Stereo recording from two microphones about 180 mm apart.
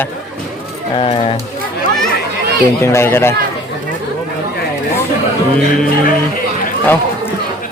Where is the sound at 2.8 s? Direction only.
15° left (ahead or behind).